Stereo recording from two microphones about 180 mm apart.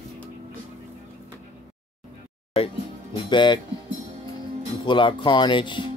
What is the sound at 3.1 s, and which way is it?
Music, 25° left (ahead or behind).